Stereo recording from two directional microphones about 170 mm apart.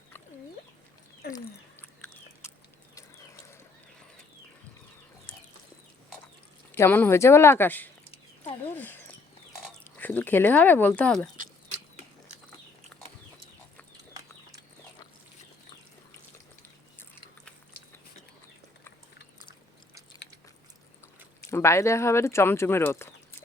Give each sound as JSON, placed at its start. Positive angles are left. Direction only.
{"t": 6.7, "sound": "speech", "side_deg": 15}
{"t": 8.6, "sound": "a sound", "side_deg": 10}
{"t": 9.8, "sound": "speech", "side_deg": 10}
{"t": 21.5, "sound": "speech", "side_deg": 15}